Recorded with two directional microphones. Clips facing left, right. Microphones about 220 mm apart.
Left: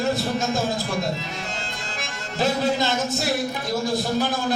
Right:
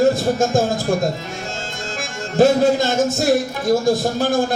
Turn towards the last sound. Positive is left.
turn(degrees=-45)  # may be behind; listen again after turning